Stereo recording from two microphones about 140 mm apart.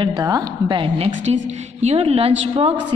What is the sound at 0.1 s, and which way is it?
A woman's voice, 25° right (ahead or behind).